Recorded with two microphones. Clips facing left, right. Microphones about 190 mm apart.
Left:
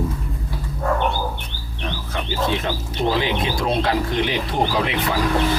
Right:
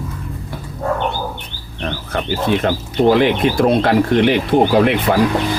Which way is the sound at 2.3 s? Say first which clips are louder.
Right 6 dB; 60° right (ahead or behind).